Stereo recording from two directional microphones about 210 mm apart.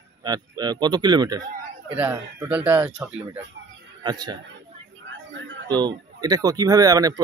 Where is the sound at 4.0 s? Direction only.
20° right (ahead or behind).